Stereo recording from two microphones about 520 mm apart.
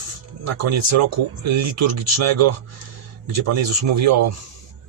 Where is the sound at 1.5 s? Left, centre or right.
Right.